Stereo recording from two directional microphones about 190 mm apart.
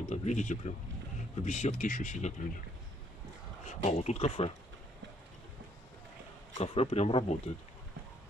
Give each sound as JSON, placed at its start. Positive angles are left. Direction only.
{"t": 0.1, "sound": "speech", "side_deg": 35}
{"t": 3.6, "sound": "speech", "side_deg": 35}
{"t": 6.6, "sound": "speech", "side_deg": 30}